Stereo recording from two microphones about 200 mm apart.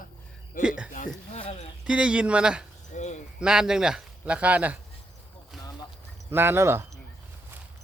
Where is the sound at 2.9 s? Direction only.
35° left (ahead or behind).